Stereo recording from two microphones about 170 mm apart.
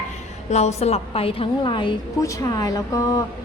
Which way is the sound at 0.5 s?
40° left (ahead or behind).